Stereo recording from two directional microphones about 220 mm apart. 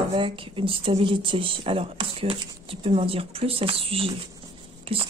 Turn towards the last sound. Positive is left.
turn(degrees=-25)  # may be behind; listen again after turning